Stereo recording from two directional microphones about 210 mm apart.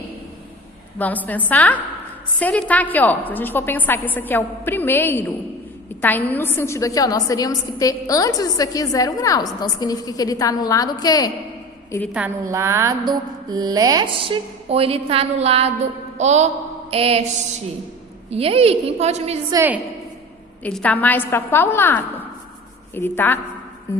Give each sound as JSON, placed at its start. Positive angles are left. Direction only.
{"t": 0.9, "sound": "a woman's voice", "side_deg": 10}
{"t": 12.1, "sound": "mantra", "side_deg": -10}
{"t": 16.1, "sound": "music", "side_deg": -30}
{"t": 16.9, "sound": "mantra", "side_deg": -30}
{"t": 18.3, "sound": "mantra", "side_deg": -30}
{"t": 19.5, "sound": "a woman's voice", "side_deg": -10}
{"t": 20.7, "sound": "a woman's voice", "side_deg": 5}